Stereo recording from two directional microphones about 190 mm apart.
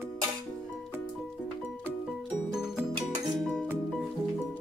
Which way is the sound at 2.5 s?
5° right (ahead or behind).